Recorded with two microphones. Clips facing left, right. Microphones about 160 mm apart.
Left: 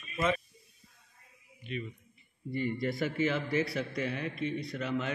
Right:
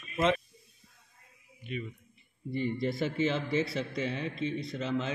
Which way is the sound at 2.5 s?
25° right (ahead or behind).